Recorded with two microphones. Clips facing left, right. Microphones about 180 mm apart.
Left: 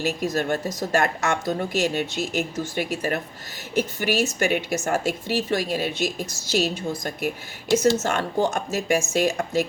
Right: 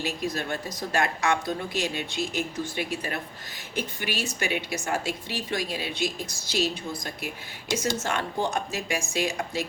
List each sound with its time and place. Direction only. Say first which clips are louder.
0.0 s a woman's voice: left 6 dB; 45° left (ahead or behind)